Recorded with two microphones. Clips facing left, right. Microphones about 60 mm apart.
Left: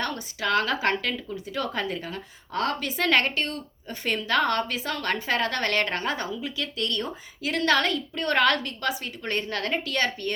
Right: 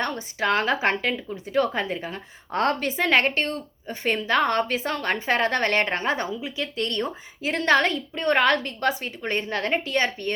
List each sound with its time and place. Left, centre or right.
0.0 s a woman's voice: right